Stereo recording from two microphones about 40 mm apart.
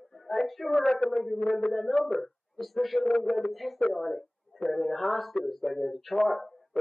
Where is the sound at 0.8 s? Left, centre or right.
Centre.